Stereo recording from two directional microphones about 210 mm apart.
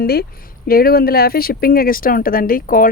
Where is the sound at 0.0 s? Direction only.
50° left (ahead or behind).